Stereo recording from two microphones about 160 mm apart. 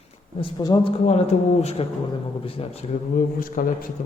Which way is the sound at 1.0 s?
40° left (ahead or behind).